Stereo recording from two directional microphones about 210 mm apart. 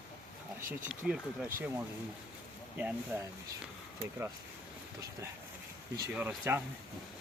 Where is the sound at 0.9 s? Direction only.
5° right (ahead or behind).